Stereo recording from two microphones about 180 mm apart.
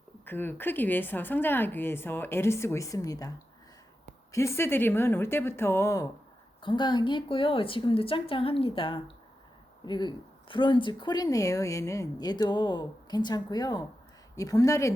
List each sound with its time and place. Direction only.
0.3 s a woman's voice: 10° left (ahead or behind)
6.6 s speech: 25° left (ahead or behind)